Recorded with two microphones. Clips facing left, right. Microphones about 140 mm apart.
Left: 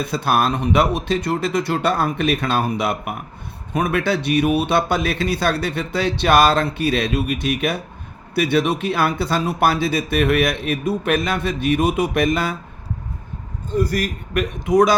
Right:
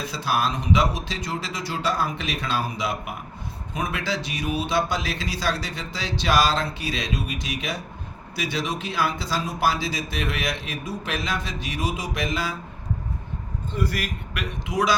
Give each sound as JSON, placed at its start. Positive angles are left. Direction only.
{"t": 0.0, "sound": "speech", "side_deg": 55}
{"t": 13.7, "sound": "a man's voice", "side_deg": 40}